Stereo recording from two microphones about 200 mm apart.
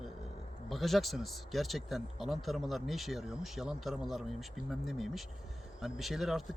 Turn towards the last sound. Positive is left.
turn(degrees=0)  # may be behind; listen again after turning